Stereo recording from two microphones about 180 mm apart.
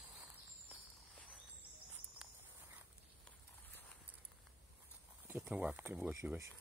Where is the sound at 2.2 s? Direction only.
5° right (ahead or behind).